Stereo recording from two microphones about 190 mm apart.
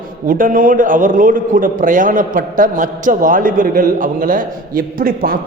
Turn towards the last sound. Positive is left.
turn(degrees=-50)  # may be behind; listen again after turning